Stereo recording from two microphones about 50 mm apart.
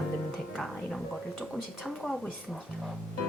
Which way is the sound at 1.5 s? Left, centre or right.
Centre.